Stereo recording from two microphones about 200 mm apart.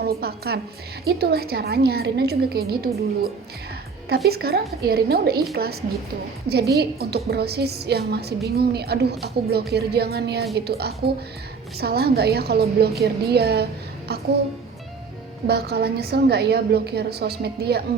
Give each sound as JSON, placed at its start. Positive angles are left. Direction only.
{"t": 0.0, "sound": "a woman's voice", "side_deg": -50}
{"t": 4.1, "sound": "a woman's voice", "side_deg": -50}
{"t": 6.5, "sound": "a woman's voice", "side_deg": -55}
{"t": 15.4, "sound": "a woman's voice", "side_deg": -55}